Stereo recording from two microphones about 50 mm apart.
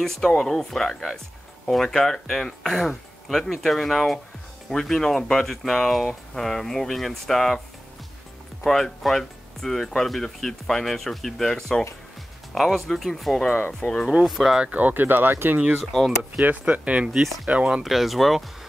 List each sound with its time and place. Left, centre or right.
0.0 s speech: centre
8.6 s speech: centre
13.7 s speech: left
14.2 s speech: centre
14.6 s speech: right
16.4 s speech: right
17.8 s speech: centre